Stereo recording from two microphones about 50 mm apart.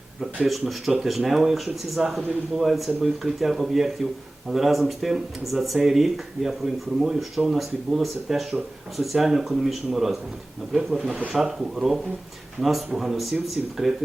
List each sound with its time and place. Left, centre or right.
0.2 s speech: centre